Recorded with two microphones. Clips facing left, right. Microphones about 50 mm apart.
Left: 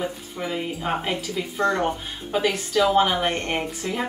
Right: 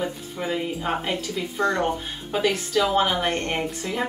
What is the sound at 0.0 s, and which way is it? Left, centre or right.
Speech, centre.